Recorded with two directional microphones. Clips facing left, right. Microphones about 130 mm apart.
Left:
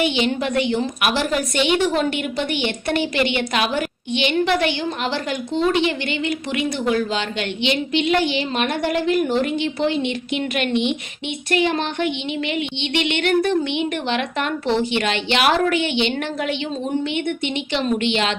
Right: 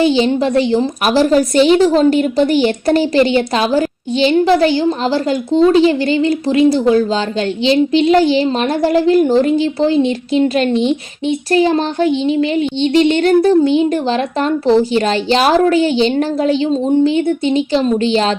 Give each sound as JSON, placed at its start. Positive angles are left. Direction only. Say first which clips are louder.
{"t": 0.0, "sound": "a woman's voice", "louder": "right 8 dB", "side_deg": -35}